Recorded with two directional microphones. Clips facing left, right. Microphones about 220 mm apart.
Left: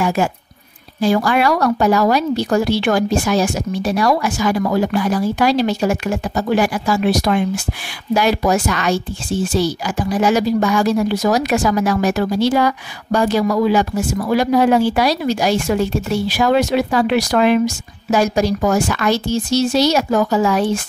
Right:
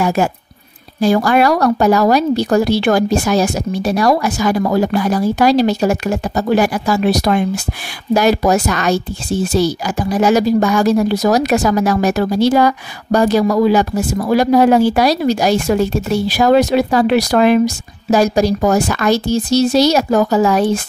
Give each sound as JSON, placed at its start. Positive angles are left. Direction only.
{"t": 0.0, "sound": "speech", "side_deg": -40}